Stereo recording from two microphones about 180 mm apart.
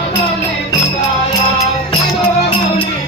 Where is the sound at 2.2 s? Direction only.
30° left (ahead or behind).